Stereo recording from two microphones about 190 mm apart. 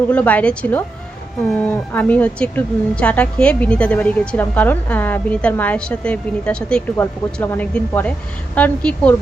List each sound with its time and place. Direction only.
0.1 s a woman's voice: 5° left (ahead or behind)